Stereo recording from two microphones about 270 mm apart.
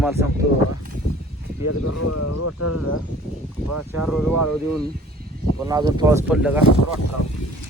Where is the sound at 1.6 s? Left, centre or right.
Left.